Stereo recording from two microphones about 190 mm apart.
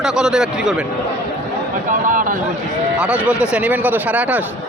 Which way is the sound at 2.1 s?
45° right (ahead or behind).